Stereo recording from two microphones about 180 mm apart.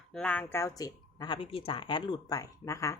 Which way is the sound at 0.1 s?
5° left (ahead or behind).